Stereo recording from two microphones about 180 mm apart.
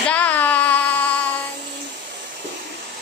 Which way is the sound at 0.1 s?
10° left (ahead or behind).